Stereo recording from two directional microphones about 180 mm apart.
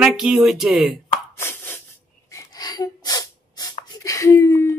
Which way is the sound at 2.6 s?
25° left (ahead or behind).